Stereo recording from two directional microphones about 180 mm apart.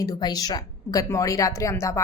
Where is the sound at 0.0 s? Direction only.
20° left (ahead or behind).